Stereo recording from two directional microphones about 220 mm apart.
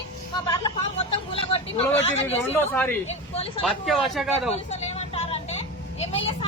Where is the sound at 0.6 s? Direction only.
25° left (ahead or behind).